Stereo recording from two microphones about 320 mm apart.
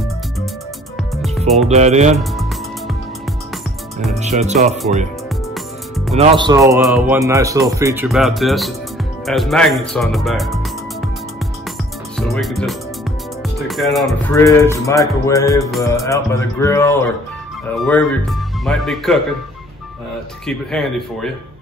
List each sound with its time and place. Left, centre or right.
1.1 s music: centre
1.7 s speech: right
4.2 s speech: right
5.5 s music: centre
6.1 s speech: centre
12.2 s speech: centre
18.7 s speech: centre
20.4 s speech: centre